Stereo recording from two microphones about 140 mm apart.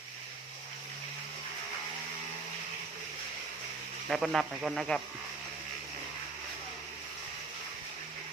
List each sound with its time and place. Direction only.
4.1 s speech: centre (ahead or behind)